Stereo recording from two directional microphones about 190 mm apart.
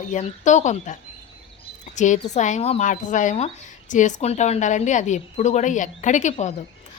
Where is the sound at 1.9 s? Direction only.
40° left (ahead or behind).